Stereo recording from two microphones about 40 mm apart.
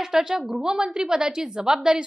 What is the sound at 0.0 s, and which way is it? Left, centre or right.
A woman's voice, centre.